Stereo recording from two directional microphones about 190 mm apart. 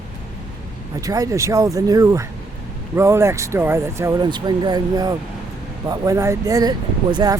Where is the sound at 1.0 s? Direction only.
20° right (ahead or behind).